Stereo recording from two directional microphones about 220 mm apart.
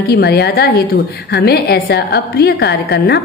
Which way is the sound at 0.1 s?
45° left (ahead or behind).